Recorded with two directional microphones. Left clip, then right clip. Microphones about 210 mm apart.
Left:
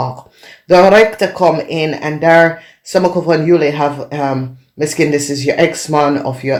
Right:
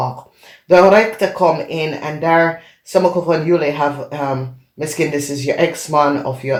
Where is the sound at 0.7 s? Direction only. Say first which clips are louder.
Left 2 dB; 45° left (ahead or behind).